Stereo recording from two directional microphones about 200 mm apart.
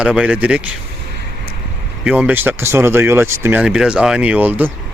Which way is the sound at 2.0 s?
5° right (ahead or behind).